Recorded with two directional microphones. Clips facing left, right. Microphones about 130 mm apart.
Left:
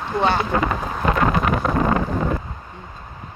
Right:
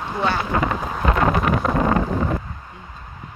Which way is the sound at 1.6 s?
Centre (ahead or behind).